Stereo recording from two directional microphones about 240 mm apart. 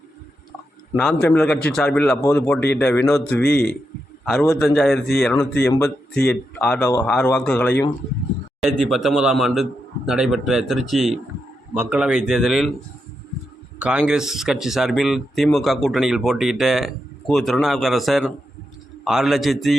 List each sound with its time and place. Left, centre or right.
0.9 s speech: centre
3.4 s a man's voice: left
4.3 s speech: centre
13.7 s speech: centre